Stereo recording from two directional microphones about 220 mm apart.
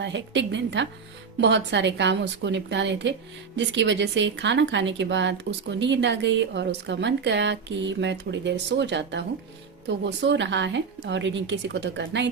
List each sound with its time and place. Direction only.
0.0 s a woman's voice: 55° right (ahead or behind)